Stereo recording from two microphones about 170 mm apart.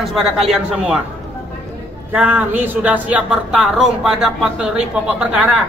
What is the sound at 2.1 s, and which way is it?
Speech, 10° right (ahead or behind).